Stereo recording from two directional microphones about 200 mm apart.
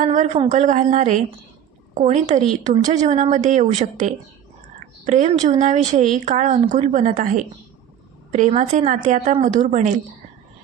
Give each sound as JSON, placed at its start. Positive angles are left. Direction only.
{"t": 0.0, "sound": "speech", "side_deg": -40}